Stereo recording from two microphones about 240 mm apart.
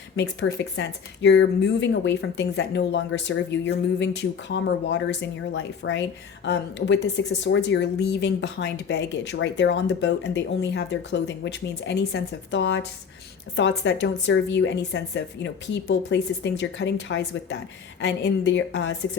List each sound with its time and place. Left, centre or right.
0.2 s a woman's voice: left